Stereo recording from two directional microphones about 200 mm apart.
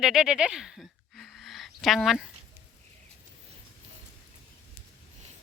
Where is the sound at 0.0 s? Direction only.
5° right (ahead or behind).